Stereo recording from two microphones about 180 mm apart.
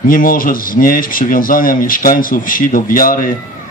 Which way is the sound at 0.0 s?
50° left (ahead or behind).